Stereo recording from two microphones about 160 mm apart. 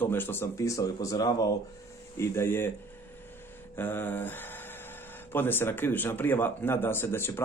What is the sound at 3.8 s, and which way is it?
Speech, 15° left (ahead or behind).